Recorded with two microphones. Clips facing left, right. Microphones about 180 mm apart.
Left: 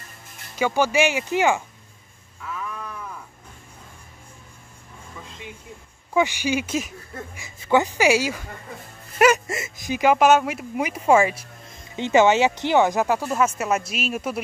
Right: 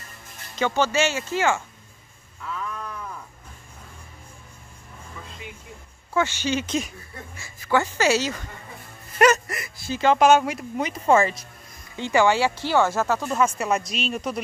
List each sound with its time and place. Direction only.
0.6 s speech: 10° left (ahead or behind)
2.4 s crow: 5° left (ahead or behind)
6.1 s speech: 15° left (ahead or behind)
7.3 s speech: 20° left (ahead or behind)
9.5 s speech: 20° left (ahead or behind)
10.1 s speech: centre (ahead or behind)
11.9 s speech: 20° left (ahead or behind)